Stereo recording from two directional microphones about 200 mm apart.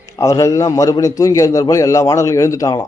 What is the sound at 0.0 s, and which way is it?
A man's voice, 15° left (ahead or behind).